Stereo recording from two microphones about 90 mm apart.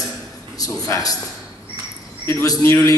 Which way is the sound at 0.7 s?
40° left (ahead or behind).